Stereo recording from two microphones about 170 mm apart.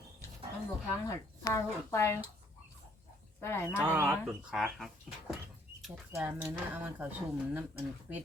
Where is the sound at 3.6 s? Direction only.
10° right (ahead or behind).